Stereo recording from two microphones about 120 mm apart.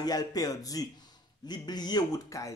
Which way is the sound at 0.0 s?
30° left (ahead or behind).